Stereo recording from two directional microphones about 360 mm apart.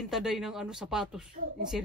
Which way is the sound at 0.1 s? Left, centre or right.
Centre.